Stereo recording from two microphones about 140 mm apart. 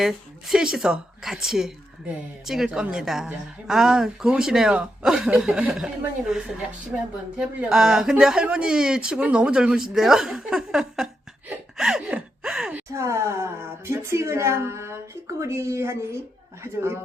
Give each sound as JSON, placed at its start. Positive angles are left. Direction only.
{"t": 0.0, "sound": "a woman's voice", "side_deg": -5}
{"t": 12.9, "sound": "speech", "side_deg": -20}